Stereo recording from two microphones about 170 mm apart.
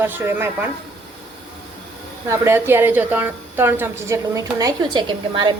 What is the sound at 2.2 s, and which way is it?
A woman's voice, 15° right (ahead or behind).